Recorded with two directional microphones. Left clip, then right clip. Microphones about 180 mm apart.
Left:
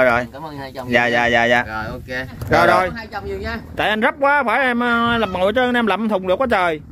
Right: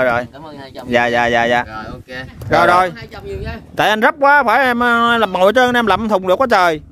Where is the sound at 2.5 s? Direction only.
20° right (ahead or behind).